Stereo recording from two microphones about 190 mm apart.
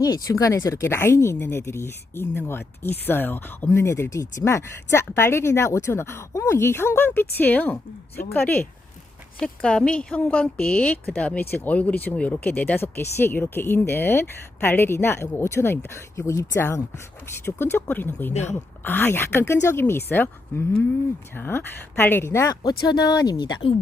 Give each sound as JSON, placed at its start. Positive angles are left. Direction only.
{"t": 0.0, "sound": "speech", "side_deg": 20}